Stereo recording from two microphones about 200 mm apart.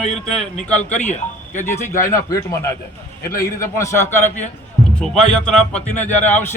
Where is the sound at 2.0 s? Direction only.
15° left (ahead or behind).